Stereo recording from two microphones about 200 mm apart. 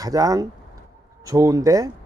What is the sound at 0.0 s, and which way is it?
Speech, 15° right (ahead or behind).